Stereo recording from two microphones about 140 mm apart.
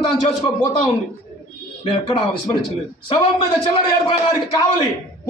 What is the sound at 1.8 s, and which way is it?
A man's voice, 35° left (ahead or behind).